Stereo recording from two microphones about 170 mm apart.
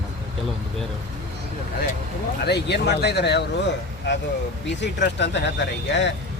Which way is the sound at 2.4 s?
75° left (ahead or behind).